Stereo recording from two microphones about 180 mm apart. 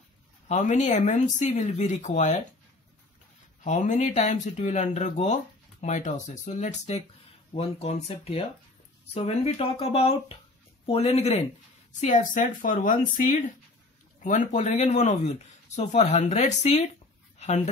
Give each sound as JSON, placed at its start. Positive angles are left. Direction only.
{"t": 0.5, "sound": "speech", "side_deg": 40}
{"t": 3.6, "sound": "speech", "side_deg": 40}
{"t": 14.2, "sound": "speech", "side_deg": 45}